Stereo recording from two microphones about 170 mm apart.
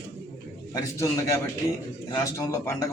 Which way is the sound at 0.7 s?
20° left (ahead or behind).